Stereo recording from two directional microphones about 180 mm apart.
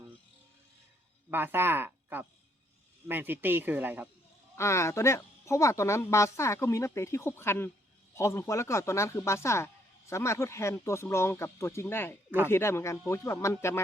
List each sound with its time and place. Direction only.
1.3 s speech: 10° right (ahead or behind)
4.5 s speech: 15° left (ahead or behind)